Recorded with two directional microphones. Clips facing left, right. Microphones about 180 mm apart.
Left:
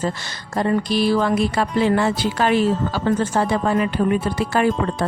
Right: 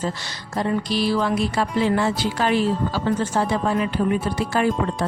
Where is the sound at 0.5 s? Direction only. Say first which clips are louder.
Left 3 dB; 50° left (ahead or behind).